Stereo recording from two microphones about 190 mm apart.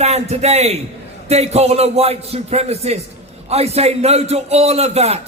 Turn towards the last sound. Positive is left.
turn(degrees=-35)  # may be behind; listen again after turning